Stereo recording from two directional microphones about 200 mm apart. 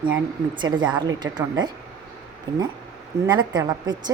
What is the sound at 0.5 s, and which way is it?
A woman's voice, 20° right (ahead or behind).